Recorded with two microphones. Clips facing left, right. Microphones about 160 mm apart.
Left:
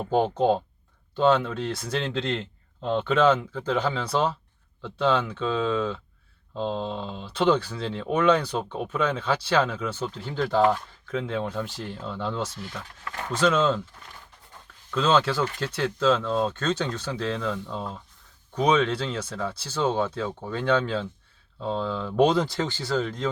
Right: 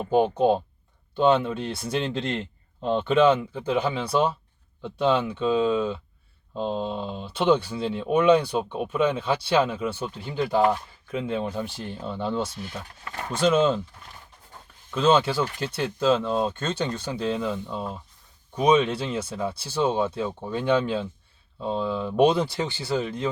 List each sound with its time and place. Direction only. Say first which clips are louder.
0.0 s speech: right 2 dB; 10° right (ahead or behind)
14.8 s speech: right 2 dB; 25° right (ahead or behind)